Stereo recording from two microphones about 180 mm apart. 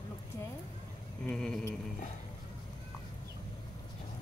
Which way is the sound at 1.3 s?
5° left (ahead or behind).